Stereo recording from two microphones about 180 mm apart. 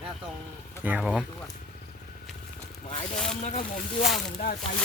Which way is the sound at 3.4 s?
40° left (ahead or behind).